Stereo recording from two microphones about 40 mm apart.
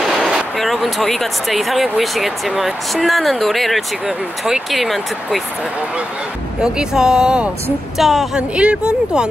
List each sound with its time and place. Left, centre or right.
0.0 s a sound: centre
0.6 s speech: centre
6.6 s speech: centre
8.0 s speech: centre
8.4 s speech: right